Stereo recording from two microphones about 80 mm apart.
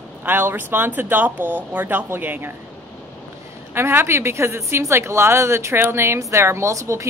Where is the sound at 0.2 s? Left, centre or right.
Right.